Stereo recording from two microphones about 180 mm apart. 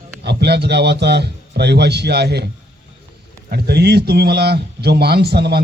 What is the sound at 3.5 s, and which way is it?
Speech, 65° right (ahead or behind).